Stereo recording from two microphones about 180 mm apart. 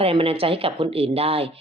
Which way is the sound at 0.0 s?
30° right (ahead or behind).